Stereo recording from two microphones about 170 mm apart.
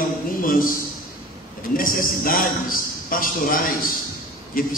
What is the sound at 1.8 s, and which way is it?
A man's voice, 55° left (ahead or behind).